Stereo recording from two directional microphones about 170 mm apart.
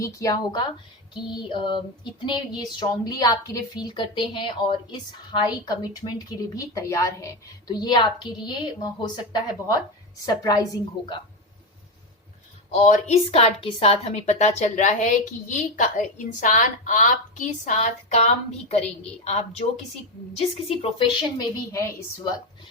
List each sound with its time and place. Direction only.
0.0 s a woman's voice: 20° left (ahead or behind)
12.7 s a woman's voice: 40° left (ahead or behind)
20.7 s a woman's voice: 35° left (ahead or behind)